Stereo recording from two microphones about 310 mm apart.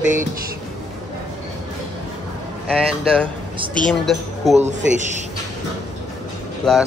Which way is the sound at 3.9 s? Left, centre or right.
Centre.